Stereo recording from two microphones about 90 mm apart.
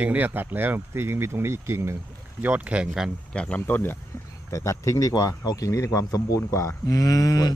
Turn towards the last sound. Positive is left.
turn(degrees=40)  # may be behind; listen again after turning